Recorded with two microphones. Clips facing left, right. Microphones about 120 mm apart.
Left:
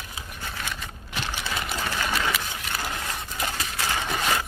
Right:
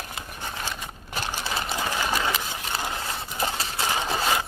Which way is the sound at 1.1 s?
40° right (ahead or behind).